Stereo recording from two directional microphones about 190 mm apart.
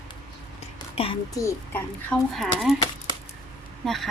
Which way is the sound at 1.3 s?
15° left (ahead or behind).